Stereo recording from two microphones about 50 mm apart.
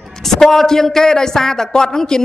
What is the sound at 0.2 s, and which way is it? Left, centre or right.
A man's voice, centre.